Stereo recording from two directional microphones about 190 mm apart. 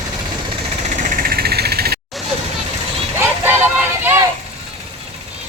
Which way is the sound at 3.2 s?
10° right (ahead or behind).